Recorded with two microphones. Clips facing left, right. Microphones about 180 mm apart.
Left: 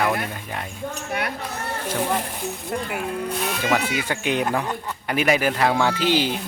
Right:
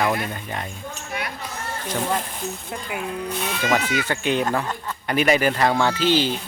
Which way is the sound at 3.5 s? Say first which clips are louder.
Right 2 dB; 5° left (ahead or behind).